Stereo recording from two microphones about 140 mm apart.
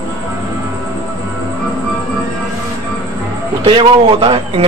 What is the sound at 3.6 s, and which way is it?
A man's voice, 40° right (ahead or behind).